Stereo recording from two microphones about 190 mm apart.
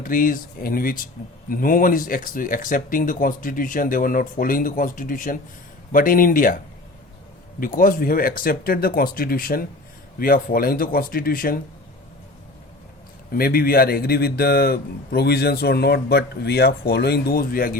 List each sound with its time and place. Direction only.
0.0 s speech: 45° left (ahead or behind)
7.6 s speech: 45° left (ahead or behind)
13.3 s a man's voice: 50° left (ahead or behind)